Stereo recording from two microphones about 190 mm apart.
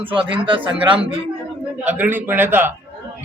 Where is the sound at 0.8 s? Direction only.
5° right (ahead or behind).